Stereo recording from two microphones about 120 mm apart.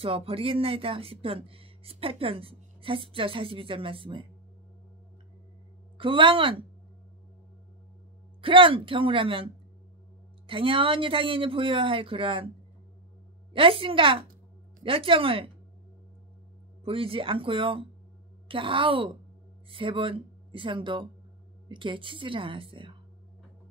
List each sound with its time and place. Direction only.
0.0 s speech: 50° right (ahead or behind)
5.9 s speech: 45° right (ahead or behind)
8.4 s speech: 45° right (ahead or behind)
13.5 s speech: 50° right (ahead or behind)
16.8 s speech: 50° right (ahead or behind)